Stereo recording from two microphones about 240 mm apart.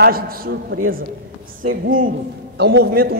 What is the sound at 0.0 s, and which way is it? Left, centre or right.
Speech, right.